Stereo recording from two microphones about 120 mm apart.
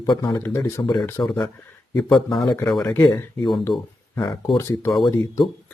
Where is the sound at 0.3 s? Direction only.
25° left (ahead or behind).